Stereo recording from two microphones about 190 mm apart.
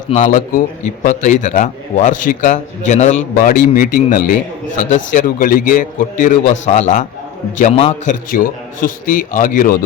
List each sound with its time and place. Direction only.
1.0 s a man's voice: 40° left (ahead or behind)
8.3 s a man's voice: 45° left (ahead or behind)